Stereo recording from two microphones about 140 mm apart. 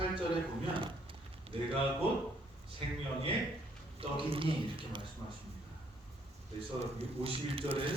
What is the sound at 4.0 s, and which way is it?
A man's voice, 40° right (ahead or behind).